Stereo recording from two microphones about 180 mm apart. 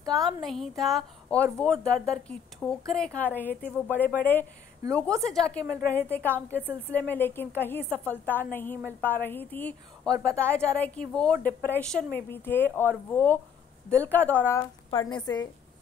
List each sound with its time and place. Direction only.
0.1 s a woman's voice: centre (ahead or behind)
14.9 s a woman's voice: 25° left (ahead or behind)